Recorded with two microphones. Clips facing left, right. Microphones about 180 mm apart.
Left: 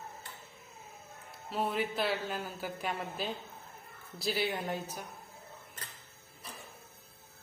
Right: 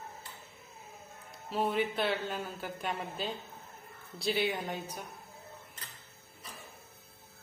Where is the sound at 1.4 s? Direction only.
Centre (ahead or behind).